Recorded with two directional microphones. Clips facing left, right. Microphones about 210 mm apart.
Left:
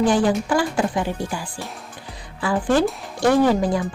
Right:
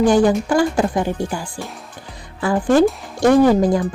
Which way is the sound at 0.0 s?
45° right (ahead or behind).